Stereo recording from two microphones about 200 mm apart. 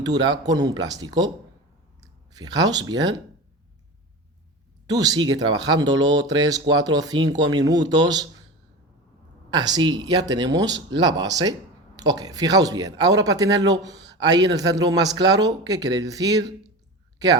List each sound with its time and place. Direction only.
0.0 s speech: 20° right (ahead or behind)
4.9 s speech: 20° right (ahead or behind)
9.5 s speech: 20° right (ahead or behind)